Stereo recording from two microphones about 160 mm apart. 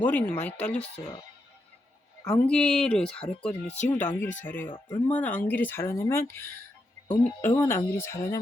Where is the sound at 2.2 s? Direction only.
10° left (ahead or behind).